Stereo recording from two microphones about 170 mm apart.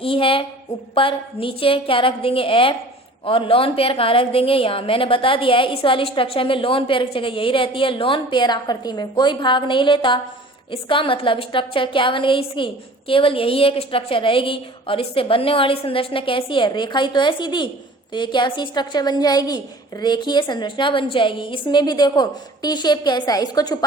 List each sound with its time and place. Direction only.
0.0 s a woman's voice: 30° left (ahead or behind)